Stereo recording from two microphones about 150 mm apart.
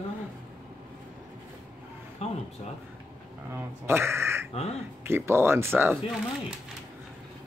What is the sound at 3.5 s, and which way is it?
Speech, 15° right (ahead or behind).